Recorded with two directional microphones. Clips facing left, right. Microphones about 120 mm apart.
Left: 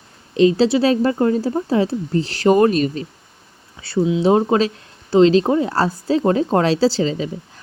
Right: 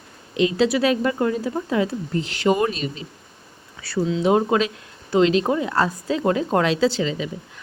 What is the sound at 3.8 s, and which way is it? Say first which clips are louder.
Speech: left 4 dB; 25° left (ahead or behind).